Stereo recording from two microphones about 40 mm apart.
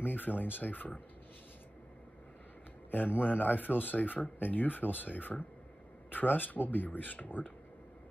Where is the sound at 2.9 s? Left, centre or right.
Left.